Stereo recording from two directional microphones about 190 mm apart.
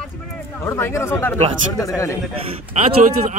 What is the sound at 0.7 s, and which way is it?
Speech, 15° left (ahead or behind).